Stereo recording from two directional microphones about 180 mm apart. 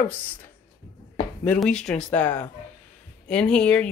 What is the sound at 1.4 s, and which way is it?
Speech, 5° left (ahead or behind).